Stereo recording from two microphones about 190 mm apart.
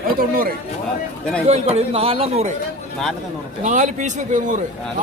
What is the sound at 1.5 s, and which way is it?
A man's voice, 35° right (ahead or behind).